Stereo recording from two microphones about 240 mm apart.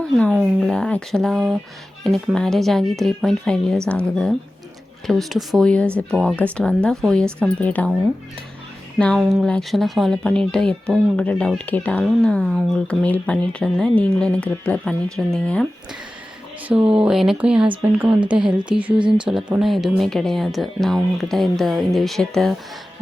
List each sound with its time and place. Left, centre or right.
0.0 s speech: centre
9.0 s speech: centre
16.9 s speech: centre